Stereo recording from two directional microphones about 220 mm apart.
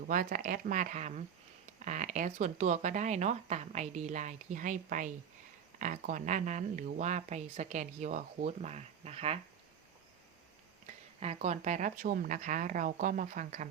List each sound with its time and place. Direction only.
0.1 s speech: 40° right (ahead or behind)
11.2 s speech: 30° right (ahead or behind)